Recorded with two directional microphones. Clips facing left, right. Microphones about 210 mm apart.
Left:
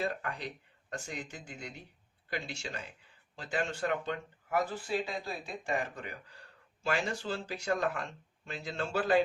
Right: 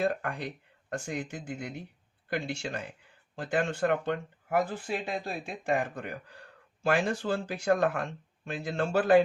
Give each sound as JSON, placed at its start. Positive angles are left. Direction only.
{"t": 0.0, "sound": "speech", "side_deg": -50}